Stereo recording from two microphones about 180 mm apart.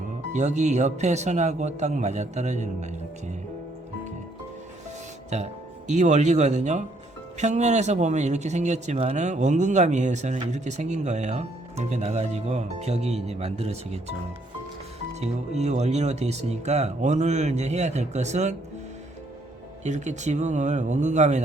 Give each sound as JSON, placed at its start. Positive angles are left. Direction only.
{"t": 0.3, "sound": "speech", "side_deg": -40}
{"t": 5.9, "sound": "speech", "side_deg": -40}
{"t": 15.1, "sound": "speech", "side_deg": -40}
{"t": 19.8, "sound": "speech", "side_deg": -40}